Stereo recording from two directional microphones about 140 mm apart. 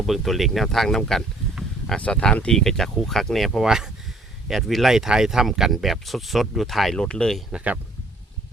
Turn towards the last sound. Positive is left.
turn(degrees=-10)  # may be behind; listen again after turning